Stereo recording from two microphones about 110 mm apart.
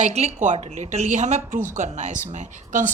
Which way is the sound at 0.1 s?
85° right.